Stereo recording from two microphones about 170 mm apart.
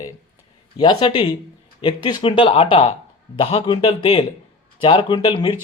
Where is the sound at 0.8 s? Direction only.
25° left (ahead or behind).